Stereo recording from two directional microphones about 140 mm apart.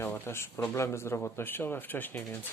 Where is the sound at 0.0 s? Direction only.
20° left (ahead or behind).